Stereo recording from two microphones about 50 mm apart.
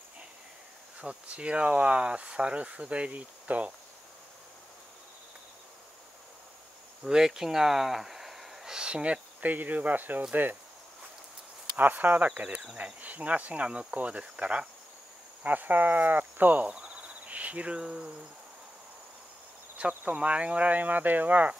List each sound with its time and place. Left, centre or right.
1.0 s speech: right
7.1 s speech: centre
8.7 s speech: right
11.7 s speech: right
12.3 s speech: right
15.4 s speech: right
16.6 s cricket: right
19.8 s speech: right